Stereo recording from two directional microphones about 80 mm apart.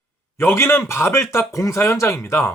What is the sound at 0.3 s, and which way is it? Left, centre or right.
Speech, left.